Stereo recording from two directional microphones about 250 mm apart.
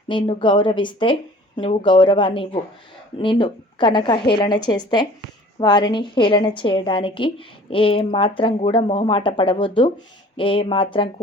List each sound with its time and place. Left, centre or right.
0.1 s a woman's voice: centre